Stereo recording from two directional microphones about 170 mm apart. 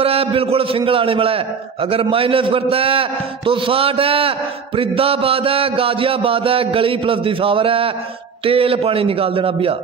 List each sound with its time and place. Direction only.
0.0 s a man's voice: 35° right (ahead or behind)